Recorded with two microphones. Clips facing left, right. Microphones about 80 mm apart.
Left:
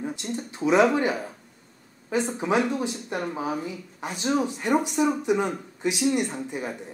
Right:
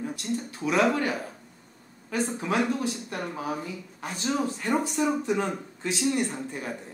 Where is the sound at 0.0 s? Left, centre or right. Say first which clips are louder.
Even; left.